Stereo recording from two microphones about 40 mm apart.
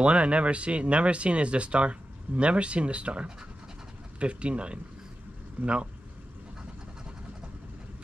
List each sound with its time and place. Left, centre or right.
0.0 s speech: right